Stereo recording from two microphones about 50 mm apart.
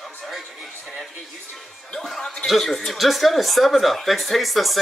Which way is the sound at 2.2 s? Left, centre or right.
Left.